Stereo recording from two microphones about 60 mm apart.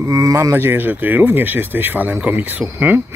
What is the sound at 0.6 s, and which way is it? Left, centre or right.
Speech, right.